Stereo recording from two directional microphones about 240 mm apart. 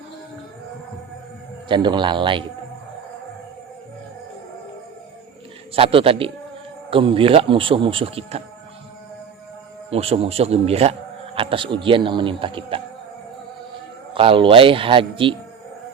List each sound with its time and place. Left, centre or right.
1.6 s speech: centre
5.7 s speech: right
9.9 s speech: right
14.1 s speech: right